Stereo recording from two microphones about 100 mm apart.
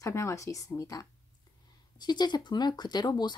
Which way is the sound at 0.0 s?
30° left (ahead or behind).